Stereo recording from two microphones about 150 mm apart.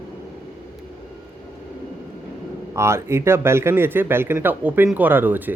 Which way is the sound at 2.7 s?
20° right (ahead or behind).